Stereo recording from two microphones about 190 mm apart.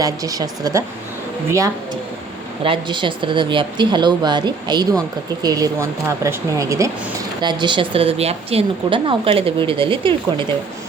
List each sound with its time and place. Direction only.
0.0 s a woman's voice: 20° right (ahead or behind)